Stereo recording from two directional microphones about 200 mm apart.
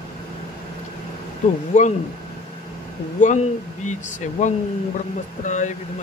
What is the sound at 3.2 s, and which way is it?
Speech, 40° left (ahead or behind).